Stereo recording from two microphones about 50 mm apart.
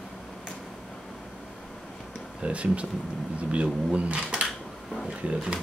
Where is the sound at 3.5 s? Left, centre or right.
Right.